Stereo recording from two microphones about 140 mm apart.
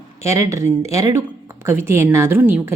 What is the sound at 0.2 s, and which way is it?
Speech, 20° right (ahead or behind).